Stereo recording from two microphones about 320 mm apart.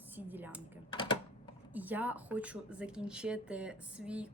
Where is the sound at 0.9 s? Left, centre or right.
Centre.